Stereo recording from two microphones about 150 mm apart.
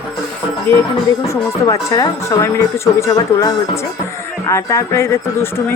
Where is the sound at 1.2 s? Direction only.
20° left (ahead or behind).